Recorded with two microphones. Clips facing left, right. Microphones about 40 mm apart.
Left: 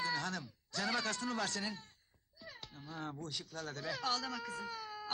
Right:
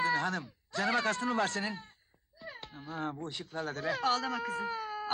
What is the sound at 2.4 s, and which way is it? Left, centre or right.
Cat, right.